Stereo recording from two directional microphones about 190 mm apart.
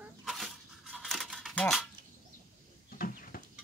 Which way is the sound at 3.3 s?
50° left (ahead or behind).